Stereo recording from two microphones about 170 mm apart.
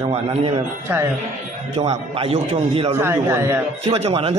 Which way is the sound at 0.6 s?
15° right (ahead or behind).